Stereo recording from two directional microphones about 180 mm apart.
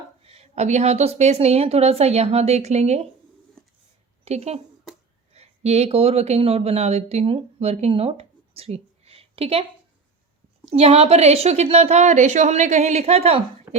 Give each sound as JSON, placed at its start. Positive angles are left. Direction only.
{"t": 0.3, "sound": "a woman's voice", "side_deg": -35}
{"t": 4.3, "sound": "a woman's voice", "side_deg": -35}
{"t": 10.7, "sound": "a woman's voice", "side_deg": -35}
{"t": 13.7, "sound": "a sound", "side_deg": -25}